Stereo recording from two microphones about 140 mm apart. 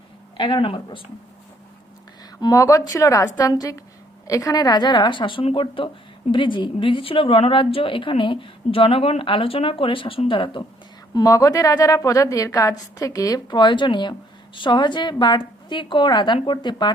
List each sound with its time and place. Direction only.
0.3 s a woman's voice: 35° left (ahead or behind)
2.4 s a woman's voice: 25° left (ahead or behind)
11.1 s a woman's voice: 25° left (ahead or behind)